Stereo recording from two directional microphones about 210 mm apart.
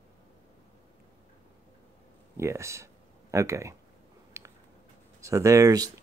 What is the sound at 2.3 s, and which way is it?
Speech, 15° right (ahead or behind).